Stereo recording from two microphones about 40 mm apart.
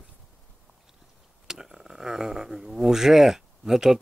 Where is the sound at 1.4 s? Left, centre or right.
Centre.